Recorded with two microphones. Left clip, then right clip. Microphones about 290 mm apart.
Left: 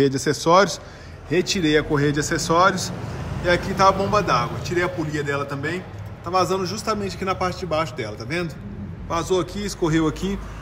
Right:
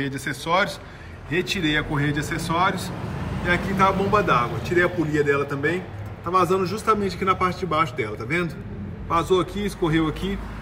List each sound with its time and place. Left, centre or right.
0.0 s a man's voice: centre
6.6 s a man's voice: left
7.2 s a man's voice: centre
9.1 s a man's voice: centre